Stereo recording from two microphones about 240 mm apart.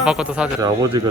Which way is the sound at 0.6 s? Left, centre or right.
Centre.